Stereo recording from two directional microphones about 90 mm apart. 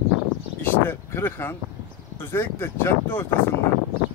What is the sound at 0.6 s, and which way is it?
Speech, 20° left (ahead or behind).